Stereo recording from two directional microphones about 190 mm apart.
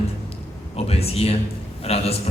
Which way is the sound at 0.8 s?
30° left (ahead or behind).